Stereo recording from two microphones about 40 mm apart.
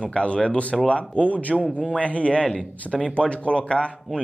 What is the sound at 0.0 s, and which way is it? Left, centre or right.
A man's voice, left.